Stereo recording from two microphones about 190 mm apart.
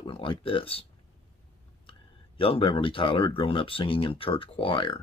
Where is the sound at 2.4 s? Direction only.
30° left (ahead or behind).